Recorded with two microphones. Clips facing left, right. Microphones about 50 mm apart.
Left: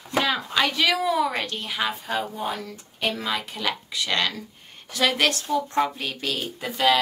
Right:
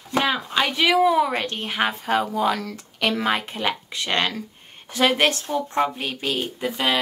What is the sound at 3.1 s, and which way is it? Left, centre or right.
Speech, right.